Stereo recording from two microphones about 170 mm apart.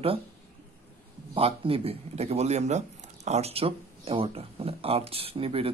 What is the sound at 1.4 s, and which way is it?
Speech, 35° right (ahead or behind).